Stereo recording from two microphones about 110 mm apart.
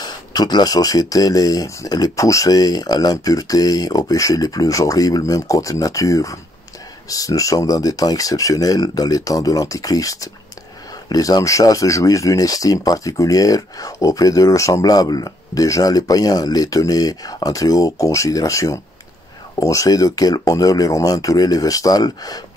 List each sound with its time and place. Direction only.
0.0 s speech: 40° left (ahead or behind)